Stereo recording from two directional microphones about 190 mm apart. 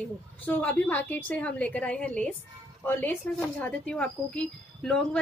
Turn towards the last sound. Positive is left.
turn(degrees=5)  # may be behind; listen again after turning